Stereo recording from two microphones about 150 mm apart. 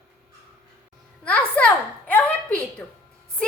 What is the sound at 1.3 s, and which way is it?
A woman's voice, 10° left (ahead or behind).